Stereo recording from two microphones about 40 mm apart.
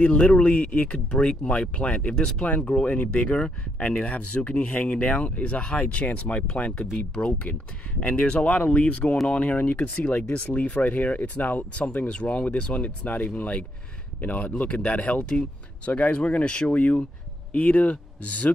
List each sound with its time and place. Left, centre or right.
0.2 s speech: centre
0.5 s speech: left
1.1 s speech: centre
8.0 s speech: left
12.7 s speech: left
14.6 s speech: left